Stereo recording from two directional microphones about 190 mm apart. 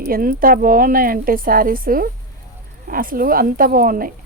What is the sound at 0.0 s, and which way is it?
Speech, 50° right (ahead or behind).